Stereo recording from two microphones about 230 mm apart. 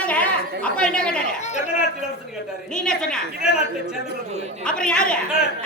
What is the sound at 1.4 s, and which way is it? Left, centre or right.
Chatter, left.